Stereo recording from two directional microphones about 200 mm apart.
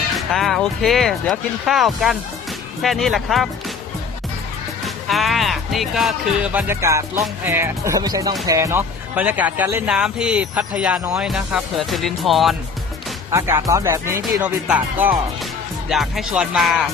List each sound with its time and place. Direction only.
0.2 s speech: centre (ahead or behind)
5.0 s speech: centre (ahead or behind)
13.3 s speech: 15° right (ahead or behind)